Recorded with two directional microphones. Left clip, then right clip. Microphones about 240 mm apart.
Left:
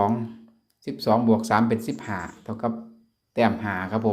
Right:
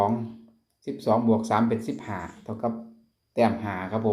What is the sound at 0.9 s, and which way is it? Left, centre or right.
Speech, left.